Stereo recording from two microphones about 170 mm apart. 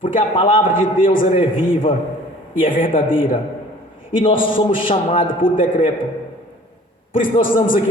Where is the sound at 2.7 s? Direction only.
55° left (ahead or behind).